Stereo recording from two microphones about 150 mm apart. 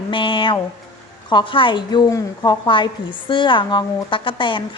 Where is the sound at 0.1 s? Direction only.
35° left (ahead or behind).